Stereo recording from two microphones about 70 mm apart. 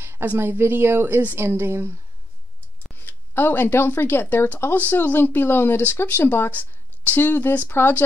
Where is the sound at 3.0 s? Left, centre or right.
Left.